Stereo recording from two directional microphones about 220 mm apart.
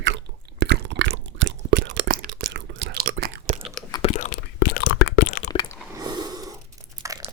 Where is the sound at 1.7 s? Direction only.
50° right (ahead or behind).